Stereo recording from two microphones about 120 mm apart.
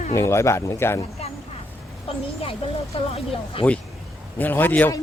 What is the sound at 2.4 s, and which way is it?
Speech, 50° left (ahead or behind).